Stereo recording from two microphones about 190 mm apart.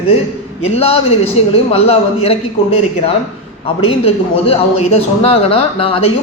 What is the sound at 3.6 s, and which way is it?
A man's voice, 30° left (ahead or behind).